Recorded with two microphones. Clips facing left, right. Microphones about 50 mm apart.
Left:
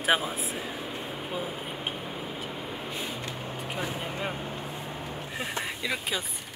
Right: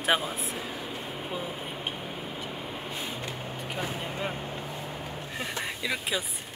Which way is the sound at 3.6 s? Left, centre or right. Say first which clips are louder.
Even; centre.